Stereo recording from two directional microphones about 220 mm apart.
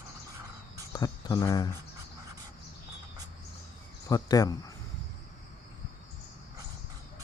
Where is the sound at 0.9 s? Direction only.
15° left (ahead or behind).